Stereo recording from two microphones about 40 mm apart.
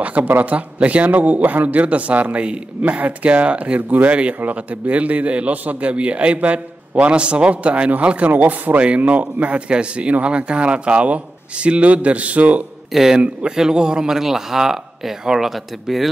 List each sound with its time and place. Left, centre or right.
0.0 s a man's voice: right
8.3 s a man's voice: right
9.7 s a man's voice: right
12.9 s speech: centre